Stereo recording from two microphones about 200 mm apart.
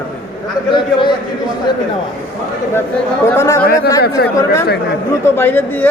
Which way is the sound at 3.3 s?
15° left (ahead or behind).